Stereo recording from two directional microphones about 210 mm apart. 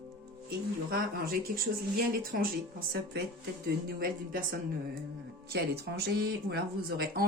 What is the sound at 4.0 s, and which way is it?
Speech, 45° right (ahead or behind).